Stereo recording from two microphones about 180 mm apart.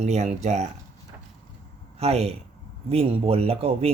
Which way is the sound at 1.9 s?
35° right (ahead or behind).